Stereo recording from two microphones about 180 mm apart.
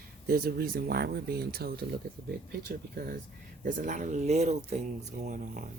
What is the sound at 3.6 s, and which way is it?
Speech, 45° right (ahead or behind).